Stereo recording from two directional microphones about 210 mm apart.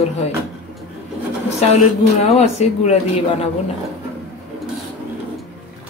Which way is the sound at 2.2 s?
30° left (ahead or behind).